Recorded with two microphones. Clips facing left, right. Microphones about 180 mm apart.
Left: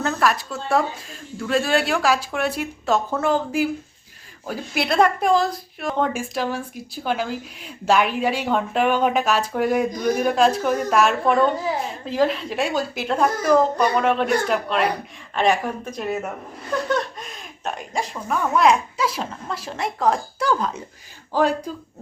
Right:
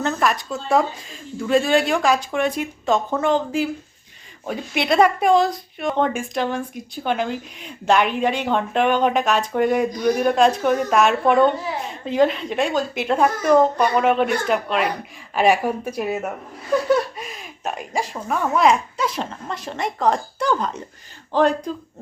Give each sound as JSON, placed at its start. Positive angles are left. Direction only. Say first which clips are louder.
{"t": 0.0, "sound": "speech", "louder": "even", "side_deg": 0}